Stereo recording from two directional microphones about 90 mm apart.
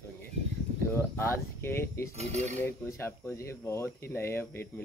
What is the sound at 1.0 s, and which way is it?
Speech, 25° left (ahead or behind).